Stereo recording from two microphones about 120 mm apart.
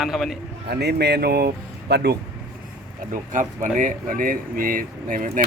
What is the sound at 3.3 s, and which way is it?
Speech, 90° right.